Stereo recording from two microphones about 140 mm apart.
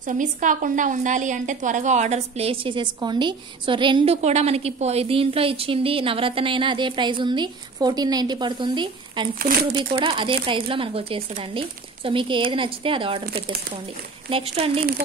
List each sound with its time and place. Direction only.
0.0 s a woman's voice: 65° right (ahead or behind); by 9.3 s 35° right (ahead or behind)
9.4 s speech: 90° right
9.9 s a woman's voice: 40° right (ahead or behind)
13.2 s speech: 90° right
14.3 s speech: 45° right (ahead or behind)